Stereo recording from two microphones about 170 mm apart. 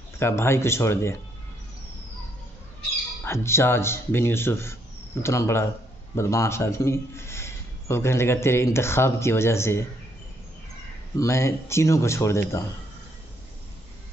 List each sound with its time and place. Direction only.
0.2 s a man's voice: 15° left (ahead or behind)
3.3 s a man's voice: 15° left (ahead or behind)
11.1 s a man's voice: 15° left (ahead or behind)